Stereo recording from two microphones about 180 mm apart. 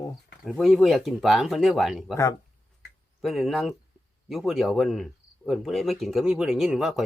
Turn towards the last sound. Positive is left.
turn(degrees=0)  # may be behind; listen again after turning